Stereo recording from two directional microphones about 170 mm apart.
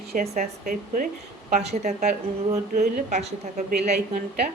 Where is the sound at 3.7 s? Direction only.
65° right (ahead or behind).